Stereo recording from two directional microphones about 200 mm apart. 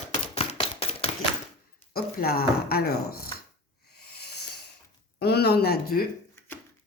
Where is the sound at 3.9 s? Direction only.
55° left (ahead or behind).